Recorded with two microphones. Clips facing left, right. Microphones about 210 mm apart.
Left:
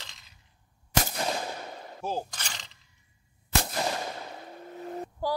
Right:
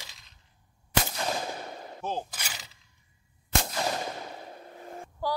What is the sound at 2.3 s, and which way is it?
Mechanisms, 5° right (ahead or behind).